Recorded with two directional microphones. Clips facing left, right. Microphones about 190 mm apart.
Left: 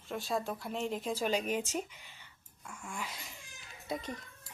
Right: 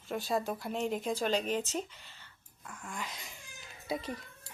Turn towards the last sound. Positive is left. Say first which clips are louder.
# right 2 dB
turn(degrees=-5)  # may be behind; listen again after turning